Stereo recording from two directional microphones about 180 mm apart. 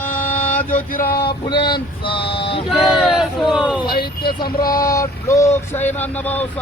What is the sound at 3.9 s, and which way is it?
Vehicle, 60° left (ahead or behind).